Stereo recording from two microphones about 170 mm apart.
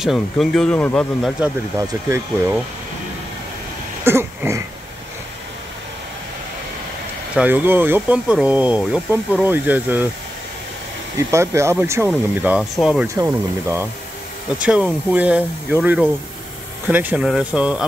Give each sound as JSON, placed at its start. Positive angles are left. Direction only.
{"t": 0.0, "sound": "speech", "side_deg": 0}
{"t": 1.4, "sound": "speech", "side_deg": -15}
{"t": 4.0, "sound": "a sound", "side_deg": -15}
{"t": 7.3, "sound": "speech", "side_deg": -10}
{"t": 11.1, "sound": "speech", "side_deg": -15}
{"t": 13.0, "sound": "speech", "side_deg": -15}
{"t": 14.6, "sound": "speech", "side_deg": -5}